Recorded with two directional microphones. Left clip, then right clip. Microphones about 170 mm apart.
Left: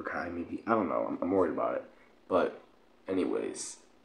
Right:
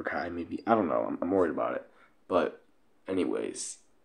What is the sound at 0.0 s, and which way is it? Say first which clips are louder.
Speech: right 3 dB; 25° right (ahead or behind).